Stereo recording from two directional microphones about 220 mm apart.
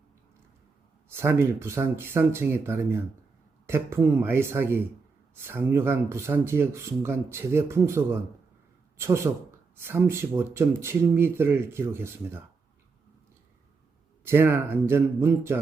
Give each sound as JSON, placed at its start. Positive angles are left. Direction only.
{"t": 1.1, "sound": "speech", "side_deg": -10}
{"t": 14.3, "sound": "speech", "side_deg": -10}